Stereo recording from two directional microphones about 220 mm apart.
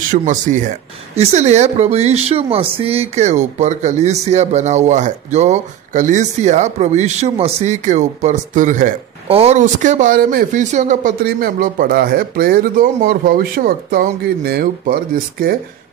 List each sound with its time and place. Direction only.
0.1 s speech: 35° right (ahead or behind)